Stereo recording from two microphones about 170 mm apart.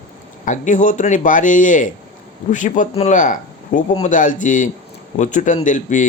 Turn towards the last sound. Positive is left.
turn(degrees=50)  # may be behind; listen again after turning